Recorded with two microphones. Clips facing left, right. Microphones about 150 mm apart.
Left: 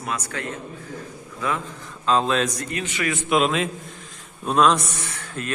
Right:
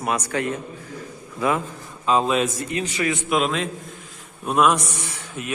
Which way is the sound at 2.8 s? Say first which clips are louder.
Right 2 dB; 35° right (ahead or behind).